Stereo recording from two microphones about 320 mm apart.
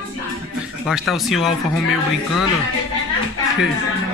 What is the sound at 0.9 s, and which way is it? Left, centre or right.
Speech, centre.